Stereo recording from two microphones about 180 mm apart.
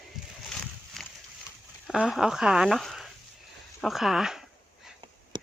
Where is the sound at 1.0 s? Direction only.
Centre (ahead or behind).